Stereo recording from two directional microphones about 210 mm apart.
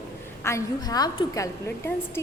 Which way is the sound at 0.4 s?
15° left (ahead or behind).